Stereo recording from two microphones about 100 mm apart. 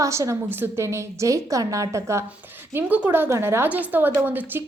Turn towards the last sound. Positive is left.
turn(degrees=-20)  # may be behind; listen again after turning